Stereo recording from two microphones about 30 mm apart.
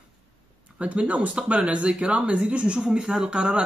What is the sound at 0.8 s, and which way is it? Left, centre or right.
Speech, right.